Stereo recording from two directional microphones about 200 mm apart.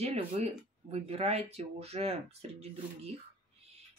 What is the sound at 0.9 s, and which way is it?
Speech, 30° right (ahead or behind).